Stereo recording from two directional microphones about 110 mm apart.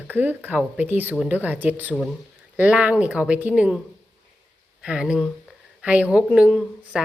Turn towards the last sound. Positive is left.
turn(degrees=-10)  # may be behind; listen again after turning